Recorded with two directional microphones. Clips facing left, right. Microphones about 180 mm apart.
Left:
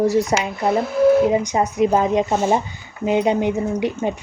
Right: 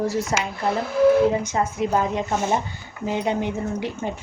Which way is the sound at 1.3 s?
15° left (ahead or behind).